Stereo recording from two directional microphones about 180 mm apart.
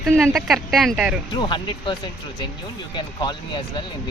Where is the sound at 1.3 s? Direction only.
25° left (ahead or behind).